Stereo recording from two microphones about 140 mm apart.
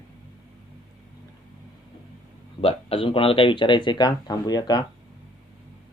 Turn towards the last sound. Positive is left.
turn(degrees=30)  # may be behind; listen again after turning